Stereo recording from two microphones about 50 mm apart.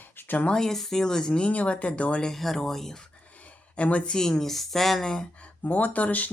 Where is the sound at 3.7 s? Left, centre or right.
Left.